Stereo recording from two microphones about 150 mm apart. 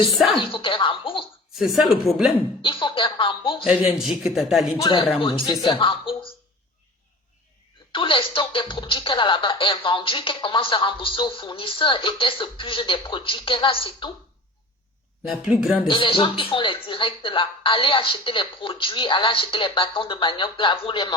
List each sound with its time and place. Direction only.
0.3 s speech: 35° left (ahead or behind)
1.5 s a man's voice: centre (ahead or behind)
2.6 s speech: 35° left (ahead or behind)
3.8 s a man's voice: centre (ahead or behind)
4.8 s speech: 25° left (ahead or behind)
7.9 s speech: 35° left (ahead or behind)
15.3 s a man's voice: 5° right (ahead or behind)
15.9 s speech: 35° left (ahead or behind)